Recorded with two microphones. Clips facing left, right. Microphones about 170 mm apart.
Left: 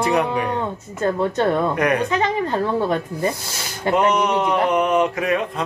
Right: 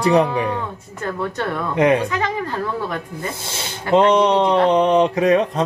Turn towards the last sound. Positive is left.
turn(degrees=-35)  # may be behind; listen again after turning